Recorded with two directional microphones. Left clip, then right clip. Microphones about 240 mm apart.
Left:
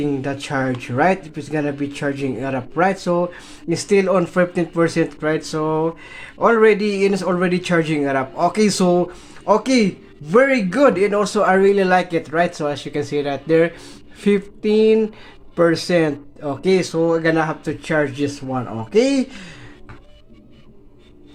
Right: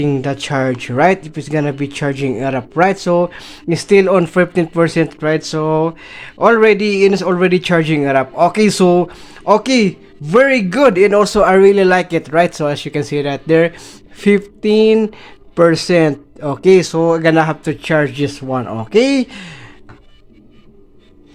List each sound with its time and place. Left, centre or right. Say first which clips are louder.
0.0 s speech: right 5 dB; right